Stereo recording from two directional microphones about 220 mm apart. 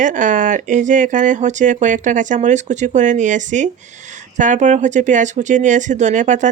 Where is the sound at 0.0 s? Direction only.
35° right (ahead or behind).